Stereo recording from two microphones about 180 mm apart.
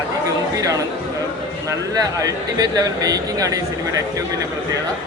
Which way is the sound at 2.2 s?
20° right (ahead or behind).